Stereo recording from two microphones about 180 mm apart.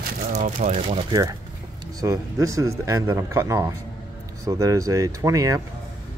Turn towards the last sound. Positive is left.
turn(degrees=-20)  # may be behind; listen again after turning